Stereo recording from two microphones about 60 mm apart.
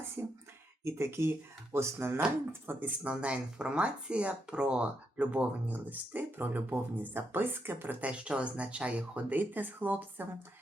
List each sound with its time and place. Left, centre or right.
0.2 s speech: right
0.9 s speech: right
8.0 s speech: centre